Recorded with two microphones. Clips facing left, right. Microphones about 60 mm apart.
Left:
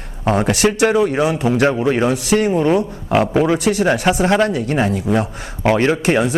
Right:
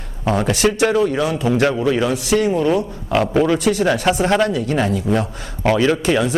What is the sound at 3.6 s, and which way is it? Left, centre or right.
Speech, left.